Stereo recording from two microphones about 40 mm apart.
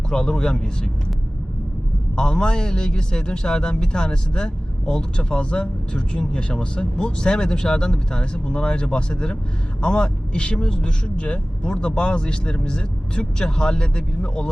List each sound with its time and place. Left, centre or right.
0.1 s a man's voice: centre
2.1 s a man's voice: left